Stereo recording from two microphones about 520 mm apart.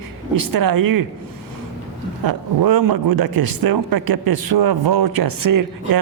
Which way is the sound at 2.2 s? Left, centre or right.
Right.